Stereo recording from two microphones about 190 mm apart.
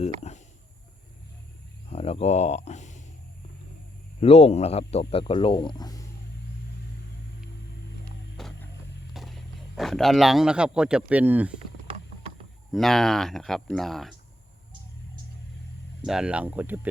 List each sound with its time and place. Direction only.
1.9 s speech: 30° left (ahead or behind)
4.2 s speech: 35° left (ahead or behind)
8.4 s music: centre (ahead or behind)
9.1 s speech: centre (ahead or behind)
12.7 s speech: centre (ahead or behind)
16.0 s speech: 5° right (ahead or behind)